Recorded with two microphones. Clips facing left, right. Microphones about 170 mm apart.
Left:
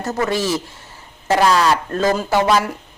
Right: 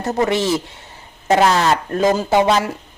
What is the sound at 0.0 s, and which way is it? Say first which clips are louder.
Speech: right 2 dB; 20° right (ahead or behind).